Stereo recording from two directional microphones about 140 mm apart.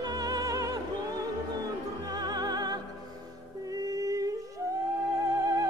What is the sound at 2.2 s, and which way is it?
Music, 30° right (ahead or behind).